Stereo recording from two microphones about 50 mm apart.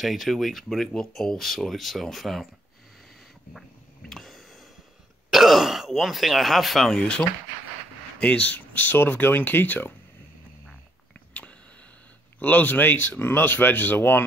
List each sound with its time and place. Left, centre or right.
0.0 s speech: centre
4.1 s a sound: centre
5.3 s speech: centre
6.9 s speech: centre
8.2 s speech: left
12.4 s speech: left